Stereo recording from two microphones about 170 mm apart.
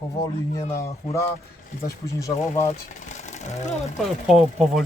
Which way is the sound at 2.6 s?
45° left (ahead or behind).